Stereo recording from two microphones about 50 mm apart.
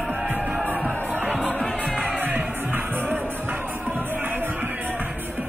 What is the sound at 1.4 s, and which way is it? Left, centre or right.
Music, left.